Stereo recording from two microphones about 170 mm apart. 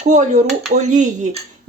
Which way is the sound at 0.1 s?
45° right (ahead or behind).